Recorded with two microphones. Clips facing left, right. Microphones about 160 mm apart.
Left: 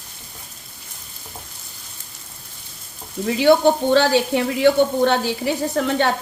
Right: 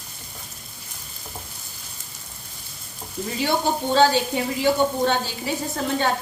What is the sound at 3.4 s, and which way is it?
Speech, 70° left (ahead or behind).